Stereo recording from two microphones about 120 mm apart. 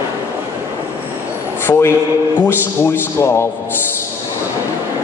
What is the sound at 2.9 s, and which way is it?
Speech, 20° left (ahead or behind).